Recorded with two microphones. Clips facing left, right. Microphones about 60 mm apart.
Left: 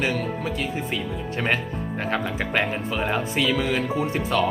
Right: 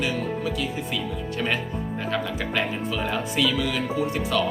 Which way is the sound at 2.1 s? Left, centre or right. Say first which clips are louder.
Left 2 dB; left.